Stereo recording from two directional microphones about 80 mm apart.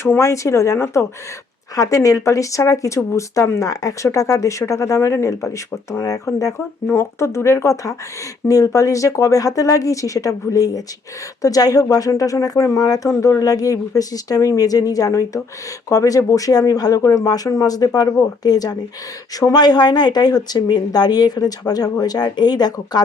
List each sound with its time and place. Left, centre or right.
0.0 s speech: left
6.9 s speech: left